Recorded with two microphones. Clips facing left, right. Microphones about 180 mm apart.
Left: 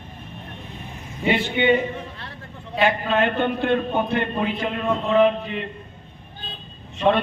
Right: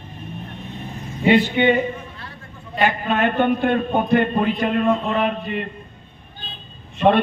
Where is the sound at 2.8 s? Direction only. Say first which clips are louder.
Even; 55° right (ahead or behind).